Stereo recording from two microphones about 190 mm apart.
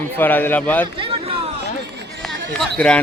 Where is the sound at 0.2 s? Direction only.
10° left (ahead or behind).